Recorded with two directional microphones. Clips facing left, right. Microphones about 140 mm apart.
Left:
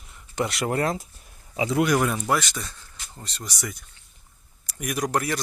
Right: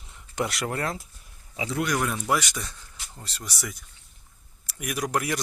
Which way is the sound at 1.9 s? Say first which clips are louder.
Left 5 dB; 5° left (ahead or behind).